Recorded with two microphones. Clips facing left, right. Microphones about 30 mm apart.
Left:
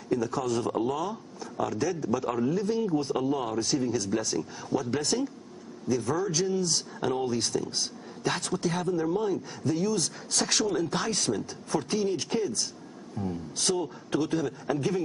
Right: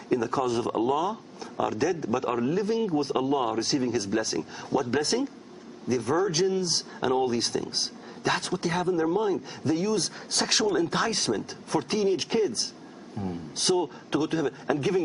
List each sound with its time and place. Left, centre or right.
0.1 s a man's voice: right